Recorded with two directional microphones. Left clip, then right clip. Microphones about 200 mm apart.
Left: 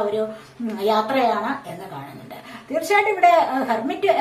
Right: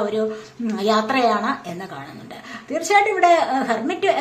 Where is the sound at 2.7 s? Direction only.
30° right (ahead or behind).